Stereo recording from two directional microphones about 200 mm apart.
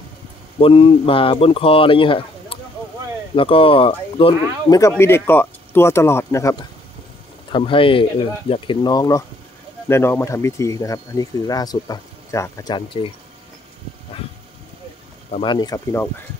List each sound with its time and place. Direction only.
0.6 s speech: 25° left (ahead or behind)
7.5 s speech: 25° left (ahead or behind)
15.3 s speech: 25° left (ahead or behind)